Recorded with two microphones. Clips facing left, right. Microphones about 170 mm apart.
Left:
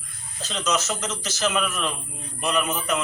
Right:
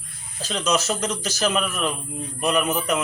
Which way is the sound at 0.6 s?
30° right (ahead or behind).